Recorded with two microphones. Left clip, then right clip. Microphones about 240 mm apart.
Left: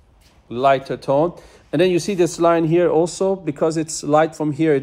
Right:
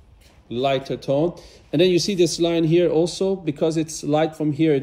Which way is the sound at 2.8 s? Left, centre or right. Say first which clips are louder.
Left 2 dB; left.